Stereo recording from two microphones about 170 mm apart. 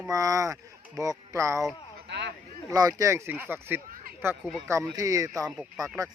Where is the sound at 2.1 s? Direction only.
85° right.